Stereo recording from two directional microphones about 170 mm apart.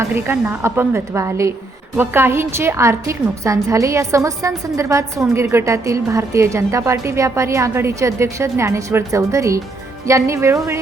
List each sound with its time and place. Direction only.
0.0 s a woman's voice: 15° right (ahead or behind)